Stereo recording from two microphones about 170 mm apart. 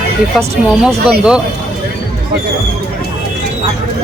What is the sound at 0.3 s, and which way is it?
Speech, centre (ahead or behind).